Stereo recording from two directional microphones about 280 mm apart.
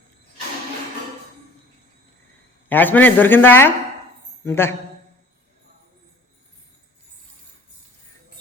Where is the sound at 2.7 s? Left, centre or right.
Centre.